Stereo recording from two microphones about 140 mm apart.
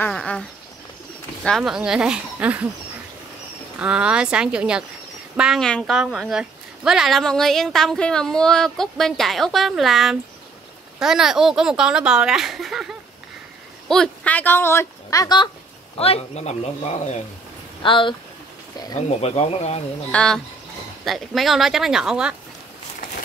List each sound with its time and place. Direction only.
0.0 s a sound: 5° left (ahead or behind)
1.4 s speech: centre (ahead or behind)
3.8 s a woman's voice: 10° right (ahead or behind); by 15.5 s 30° left (ahead or behind)
16.0 s speech: 45° left (ahead or behind)
17.8 s speech: 35° left (ahead or behind)
18.9 s speech: 50° left (ahead or behind)
20.1 s a woman's voice: 5° left (ahead or behind)